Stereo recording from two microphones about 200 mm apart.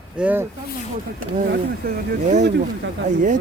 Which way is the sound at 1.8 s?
50° right (ahead or behind).